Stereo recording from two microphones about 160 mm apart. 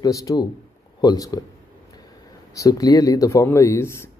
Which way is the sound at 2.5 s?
20° left (ahead or behind).